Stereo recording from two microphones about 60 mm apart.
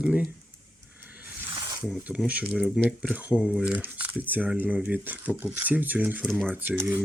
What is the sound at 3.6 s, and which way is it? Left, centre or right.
Speech, right.